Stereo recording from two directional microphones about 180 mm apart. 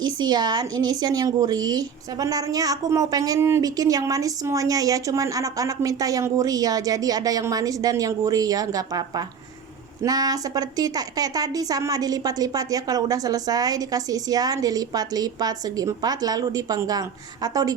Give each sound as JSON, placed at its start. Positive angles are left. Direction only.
{"t": 0.0, "sound": "a woman's voice", "side_deg": -25}